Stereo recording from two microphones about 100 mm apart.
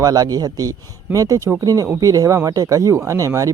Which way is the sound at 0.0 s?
40° right (ahead or behind).